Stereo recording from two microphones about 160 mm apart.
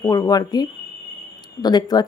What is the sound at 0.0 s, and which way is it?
Speech, 25° left (ahead or behind).